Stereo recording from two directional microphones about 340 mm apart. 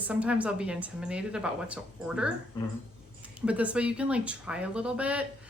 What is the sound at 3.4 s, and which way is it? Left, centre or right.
A woman's voice, centre.